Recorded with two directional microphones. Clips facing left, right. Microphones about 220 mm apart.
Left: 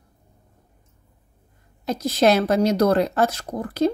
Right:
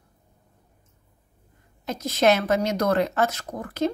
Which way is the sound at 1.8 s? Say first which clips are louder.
Left 2 dB; 35° left (ahead or behind).